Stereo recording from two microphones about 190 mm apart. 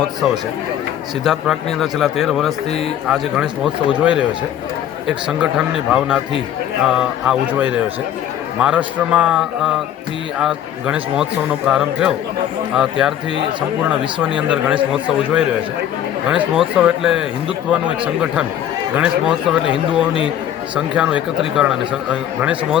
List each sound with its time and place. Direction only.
1.2 s speech: centre (ahead or behind)
14.2 s speech: 5° right (ahead or behind)
16.6 s speech: 5° right (ahead or behind)
19.6 s speech: 25° left (ahead or behind)
20.7 s a man's voice: 5° right (ahead or behind)